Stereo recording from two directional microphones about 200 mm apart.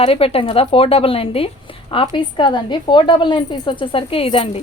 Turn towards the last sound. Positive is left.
turn(degrees=25)  # may be behind; listen again after turning